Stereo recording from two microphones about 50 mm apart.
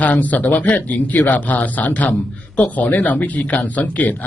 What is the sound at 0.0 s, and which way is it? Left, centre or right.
Speech, left.